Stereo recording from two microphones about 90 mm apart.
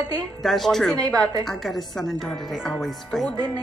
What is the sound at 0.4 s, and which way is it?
Speech, centre (ahead or behind).